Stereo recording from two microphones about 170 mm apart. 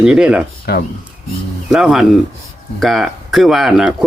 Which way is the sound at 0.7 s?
65° left (ahead or behind).